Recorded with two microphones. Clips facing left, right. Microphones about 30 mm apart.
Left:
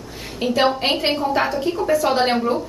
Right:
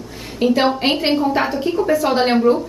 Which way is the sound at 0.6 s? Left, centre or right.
Centre.